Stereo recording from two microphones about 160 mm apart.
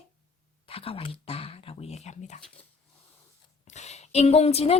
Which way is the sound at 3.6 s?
45° left (ahead or behind).